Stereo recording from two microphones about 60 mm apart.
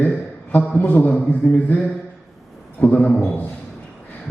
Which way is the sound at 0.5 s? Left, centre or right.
Left.